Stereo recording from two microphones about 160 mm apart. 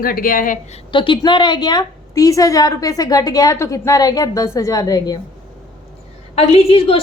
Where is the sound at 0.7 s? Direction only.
30° left (ahead or behind).